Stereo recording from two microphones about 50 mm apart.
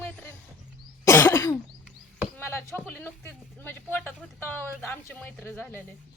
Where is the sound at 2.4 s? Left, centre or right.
Left.